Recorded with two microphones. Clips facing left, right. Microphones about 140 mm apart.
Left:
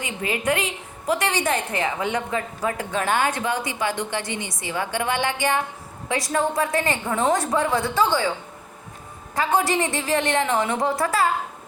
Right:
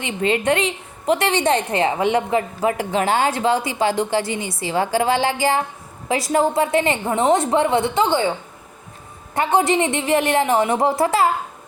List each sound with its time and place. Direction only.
0.0 s a woman's voice: 25° right (ahead or behind)
3.9 s a woman's voice: 20° left (ahead or behind)
4.7 s a woman's voice: 30° right (ahead or behind)
9.3 s a woman's voice: 25° right (ahead or behind)